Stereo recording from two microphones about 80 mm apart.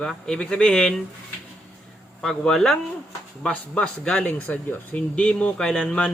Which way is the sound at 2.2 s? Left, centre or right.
Centre.